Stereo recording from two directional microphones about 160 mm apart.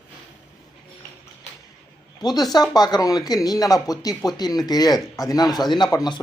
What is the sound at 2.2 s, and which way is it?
Speech, 25° left (ahead or behind).